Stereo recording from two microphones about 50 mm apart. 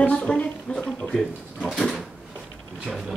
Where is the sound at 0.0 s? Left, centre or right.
Left.